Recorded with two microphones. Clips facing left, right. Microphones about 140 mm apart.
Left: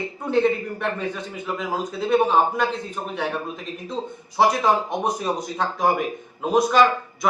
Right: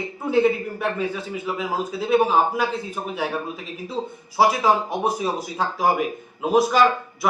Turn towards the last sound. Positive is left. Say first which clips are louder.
# even
turn(degrees=-5)  # may be behind; listen again after turning